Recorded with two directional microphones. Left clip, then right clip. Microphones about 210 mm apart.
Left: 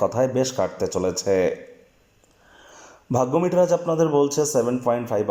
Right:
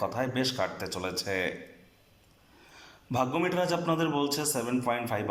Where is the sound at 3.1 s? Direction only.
30° left (ahead or behind).